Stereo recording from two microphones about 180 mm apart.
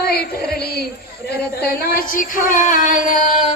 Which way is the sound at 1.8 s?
55° left (ahead or behind).